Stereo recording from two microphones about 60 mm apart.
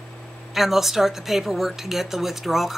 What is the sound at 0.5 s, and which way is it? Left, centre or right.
Speech, centre.